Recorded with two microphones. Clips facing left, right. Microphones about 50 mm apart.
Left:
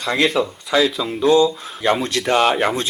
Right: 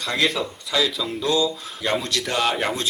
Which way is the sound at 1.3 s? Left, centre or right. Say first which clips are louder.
Left 8 dB; left.